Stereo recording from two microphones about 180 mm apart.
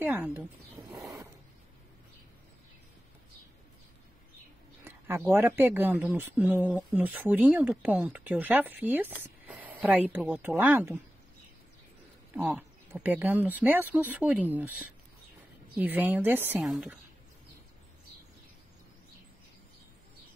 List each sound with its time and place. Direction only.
0.0 s speech: 10° right (ahead or behind)
0.8 s wild animals: 20° right (ahead or behind)
4.8 s speech: 15° right (ahead or behind)
12.3 s speech: 10° right (ahead or behind)
15.7 s a woman's voice: 10° right (ahead or behind)